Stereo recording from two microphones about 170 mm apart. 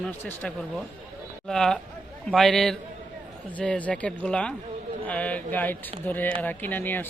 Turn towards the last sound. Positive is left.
turn(degrees=10)  # may be behind; listen again after turning